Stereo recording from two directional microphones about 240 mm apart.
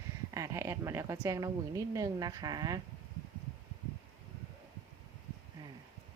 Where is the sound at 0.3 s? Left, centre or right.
Centre.